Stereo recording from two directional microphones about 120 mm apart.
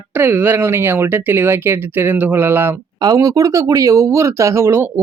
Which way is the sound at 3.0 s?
30° right (ahead or behind).